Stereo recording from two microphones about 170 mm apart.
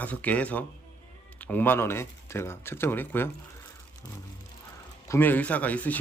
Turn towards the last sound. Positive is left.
turn(degrees=10)  # may be behind; listen again after turning